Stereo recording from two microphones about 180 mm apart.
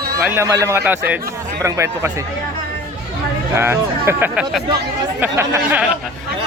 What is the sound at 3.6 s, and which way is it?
Speech, 15° right (ahead or behind).